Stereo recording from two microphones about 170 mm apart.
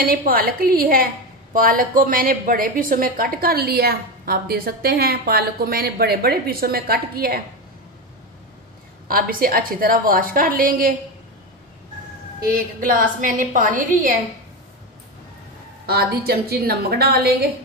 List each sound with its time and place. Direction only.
0.0 s a woman's voice: 60° right (ahead or behind)
9.0 s a woman's voice: 55° right (ahead or behind)
12.4 s a woman's voice: 55° right (ahead or behind)
15.9 s a woman's voice: 65° right (ahead or behind)